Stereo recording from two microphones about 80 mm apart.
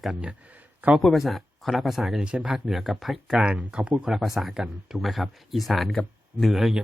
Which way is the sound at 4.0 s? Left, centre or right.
Centre.